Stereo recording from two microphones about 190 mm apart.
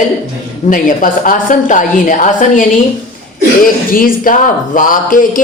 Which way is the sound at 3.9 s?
50° left (ahead or behind).